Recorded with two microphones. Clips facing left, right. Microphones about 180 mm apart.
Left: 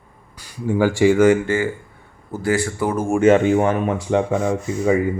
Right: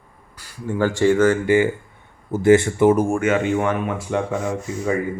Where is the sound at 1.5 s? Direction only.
20° right (ahead or behind).